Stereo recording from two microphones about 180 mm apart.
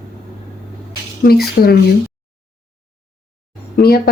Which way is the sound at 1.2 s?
60° left (ahead or behind).